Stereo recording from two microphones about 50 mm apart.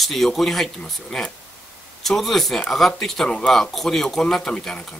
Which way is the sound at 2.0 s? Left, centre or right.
Centre.